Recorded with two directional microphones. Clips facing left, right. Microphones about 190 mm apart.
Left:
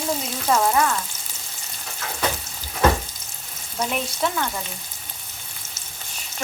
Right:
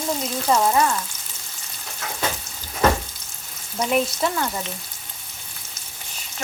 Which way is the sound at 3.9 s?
5° right (ahead or behind).